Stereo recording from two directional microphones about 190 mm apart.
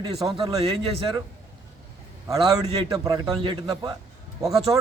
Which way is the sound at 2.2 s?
20° right (ahead or behind).